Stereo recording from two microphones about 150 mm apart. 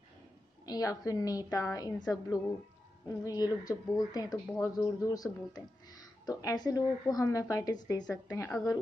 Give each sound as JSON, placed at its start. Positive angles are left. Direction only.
{"t": 0.7, "sound": "speech", "side_deg": 25}